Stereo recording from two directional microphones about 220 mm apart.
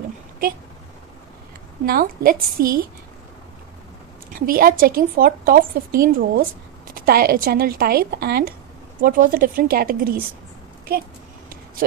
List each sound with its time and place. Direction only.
1.9 s a woman's voice: 40° right (ahead or behind)
4.3 s a woman's voice: 40° right (ahead or behind)
10.9 s a sound: 40° right (ahead or behind)